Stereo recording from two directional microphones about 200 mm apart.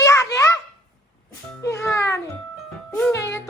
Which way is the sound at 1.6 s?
15° left (ahead or behind).